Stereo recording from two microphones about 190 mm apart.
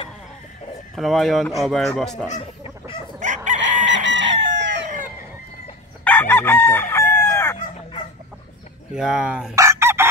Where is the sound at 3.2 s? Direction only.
40° right (ahead or behind).